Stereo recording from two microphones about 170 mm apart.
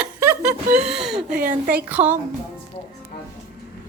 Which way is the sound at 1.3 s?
60° right (ahead or behind).